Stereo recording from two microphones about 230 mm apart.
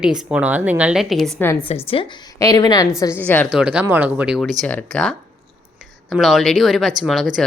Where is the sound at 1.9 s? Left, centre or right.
Centre.